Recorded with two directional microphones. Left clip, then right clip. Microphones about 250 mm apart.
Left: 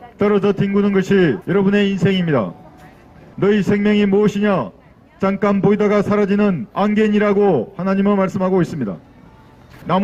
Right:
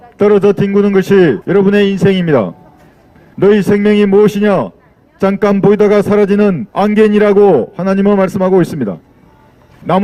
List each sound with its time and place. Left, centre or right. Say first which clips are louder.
0.2 s a man's voice: right 7 dB; right